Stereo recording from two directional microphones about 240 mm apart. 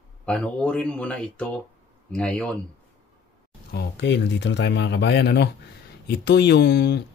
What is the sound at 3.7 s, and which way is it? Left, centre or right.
Speech, left.